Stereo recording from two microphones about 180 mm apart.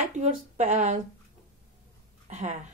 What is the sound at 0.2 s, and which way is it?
Speech, 40° right (ahead or behind).